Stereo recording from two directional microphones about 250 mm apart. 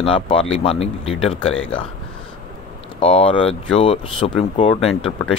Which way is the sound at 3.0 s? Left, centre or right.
Left.